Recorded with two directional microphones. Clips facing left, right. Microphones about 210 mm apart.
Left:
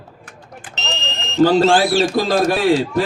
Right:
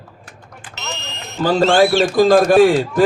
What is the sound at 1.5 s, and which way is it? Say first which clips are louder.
A man's voice: right 4 dB; 45° right (ahead or behind).